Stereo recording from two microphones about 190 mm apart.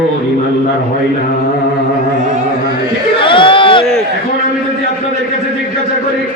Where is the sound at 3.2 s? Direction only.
25° left (ahead or behind).